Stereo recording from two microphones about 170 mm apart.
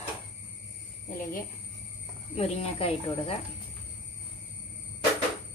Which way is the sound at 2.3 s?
35° left (ahead or behind).